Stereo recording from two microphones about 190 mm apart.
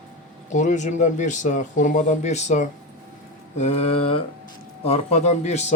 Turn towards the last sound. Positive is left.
turn(degrees=35)  # may be behind; listen again after turning